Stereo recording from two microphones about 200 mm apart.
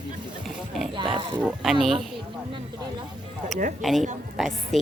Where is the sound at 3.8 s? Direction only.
Centre (ahead or behind).